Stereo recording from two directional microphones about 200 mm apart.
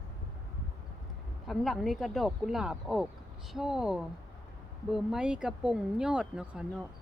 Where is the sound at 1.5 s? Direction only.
Centre (ahead or behind).